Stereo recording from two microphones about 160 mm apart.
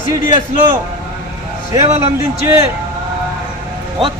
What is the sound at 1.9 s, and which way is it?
Speech, 40° right (ahead or behind).